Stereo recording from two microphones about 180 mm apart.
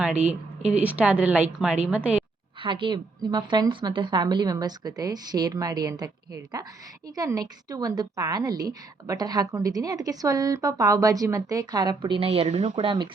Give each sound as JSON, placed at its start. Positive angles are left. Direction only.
{"t": 0.0, "sound": "a woman's voice", "side_deg": -10}
{"t": 2.6, "sound": "a woman's voice", "side_deg": -30}
{"t": 12.7, "sound": "a woman's voice", "side_deg": -25}